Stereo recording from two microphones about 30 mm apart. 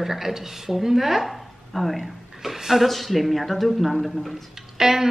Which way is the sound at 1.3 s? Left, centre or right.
Centre.